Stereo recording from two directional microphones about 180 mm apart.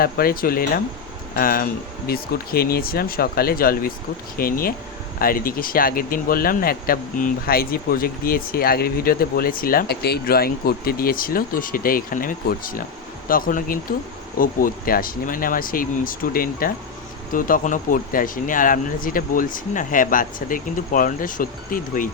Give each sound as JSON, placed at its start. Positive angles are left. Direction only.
{"t": 0.0, "sound": "speech", "side_deg": 55}